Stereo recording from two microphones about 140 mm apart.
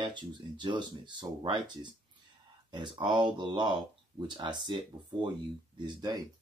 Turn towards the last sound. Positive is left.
turn(degrees=-30)  # may be behind; listen again after turning